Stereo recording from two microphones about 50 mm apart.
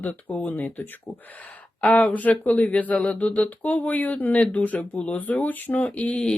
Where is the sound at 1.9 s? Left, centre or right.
Left.